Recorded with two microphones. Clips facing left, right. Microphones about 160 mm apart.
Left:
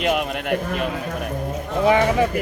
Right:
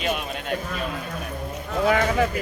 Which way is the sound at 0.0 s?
65° left (ahead or behind).